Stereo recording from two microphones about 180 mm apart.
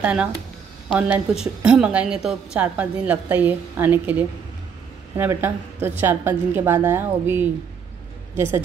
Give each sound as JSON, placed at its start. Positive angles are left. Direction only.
{"t": 0.0, "sound": "a woman's voice", "side_deg": -5}